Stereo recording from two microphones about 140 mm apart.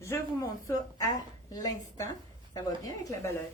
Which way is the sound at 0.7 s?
25° left (ahead or behind).